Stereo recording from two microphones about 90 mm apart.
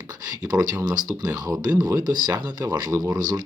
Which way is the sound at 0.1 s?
45° right (ahead or behind).